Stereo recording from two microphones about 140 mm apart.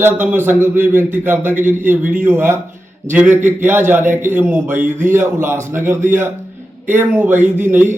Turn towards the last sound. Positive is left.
turn(degrees=-15)  # may be behind; listen again after turning